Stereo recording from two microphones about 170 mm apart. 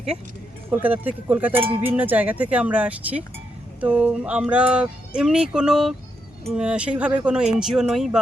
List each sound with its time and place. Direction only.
0.7 s speech: 10° right (ahead or behind)